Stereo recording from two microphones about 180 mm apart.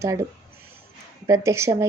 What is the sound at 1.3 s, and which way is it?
Speech, 15° right (ahead or behind).